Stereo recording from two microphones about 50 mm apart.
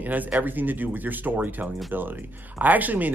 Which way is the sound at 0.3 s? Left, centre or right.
Right.